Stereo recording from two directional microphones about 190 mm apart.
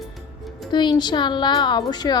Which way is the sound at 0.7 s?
25° left (ahead or behind).